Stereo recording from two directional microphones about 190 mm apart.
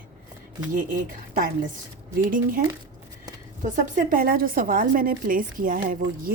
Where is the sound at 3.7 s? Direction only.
45° right (ahead or behind).